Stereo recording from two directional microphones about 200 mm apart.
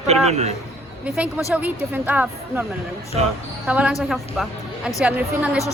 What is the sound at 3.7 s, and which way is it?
Speech, 5° right (ahead or behind).